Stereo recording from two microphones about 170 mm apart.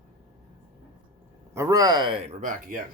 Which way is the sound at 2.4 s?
55° right (ahead or behind).